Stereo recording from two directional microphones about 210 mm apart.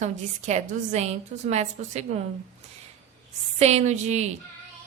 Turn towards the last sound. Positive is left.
turn(degrees=-30)  # may be behind; listen again after turning